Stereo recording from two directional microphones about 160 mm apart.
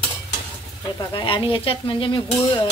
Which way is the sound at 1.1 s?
30° left (ahead or behind).